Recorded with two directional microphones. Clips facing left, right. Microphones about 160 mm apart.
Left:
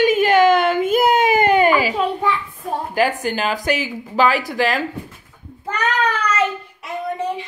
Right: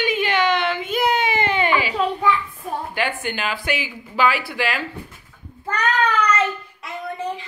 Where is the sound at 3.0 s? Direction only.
40° left (ahead or behind).